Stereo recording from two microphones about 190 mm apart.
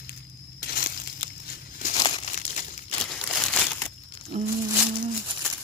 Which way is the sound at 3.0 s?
Centre (ahead or behind).